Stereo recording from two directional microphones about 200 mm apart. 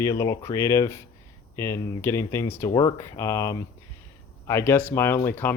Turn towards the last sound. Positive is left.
turn(degrees=10)  # may be behind; listen again after turning